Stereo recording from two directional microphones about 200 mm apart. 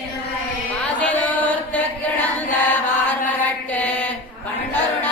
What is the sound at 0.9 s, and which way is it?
Chant, 10° left (ahead or behind).